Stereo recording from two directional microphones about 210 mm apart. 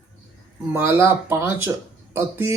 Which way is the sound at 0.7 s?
15° right (ahead or behind).